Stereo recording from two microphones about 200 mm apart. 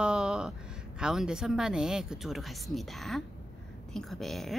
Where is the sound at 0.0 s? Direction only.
5° right (ahead or behind).